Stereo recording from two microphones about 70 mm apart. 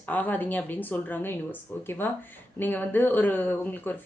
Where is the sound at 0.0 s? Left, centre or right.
Left.